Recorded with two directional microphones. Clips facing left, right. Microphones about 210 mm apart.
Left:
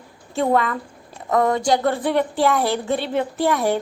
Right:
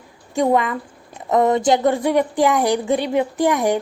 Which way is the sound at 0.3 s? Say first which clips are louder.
Right 2 dB; 15° right (ahead or behind).